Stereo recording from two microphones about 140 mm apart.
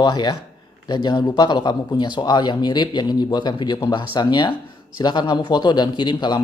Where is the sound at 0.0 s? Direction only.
30° left (ahead or behind).